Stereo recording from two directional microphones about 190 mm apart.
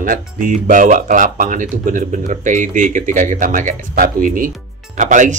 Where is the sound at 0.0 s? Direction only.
45° right (ahead or behind).